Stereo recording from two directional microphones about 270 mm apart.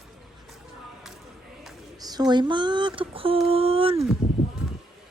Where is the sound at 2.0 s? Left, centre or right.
Centre.